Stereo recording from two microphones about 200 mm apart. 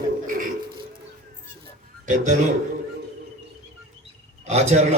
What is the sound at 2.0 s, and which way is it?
Speech, 35° right (ahead or behind).